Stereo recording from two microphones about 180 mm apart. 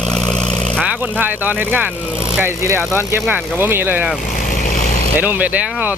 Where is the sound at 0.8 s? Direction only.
10° right (ahead or behind).